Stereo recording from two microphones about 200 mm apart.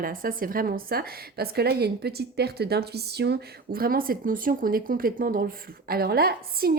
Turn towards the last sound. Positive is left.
turn(degrees=-50)  # may be behind; listen again after turning